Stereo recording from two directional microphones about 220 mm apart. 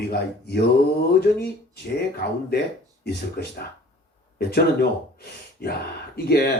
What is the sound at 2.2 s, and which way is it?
Speech, 45° left (ahead or behind).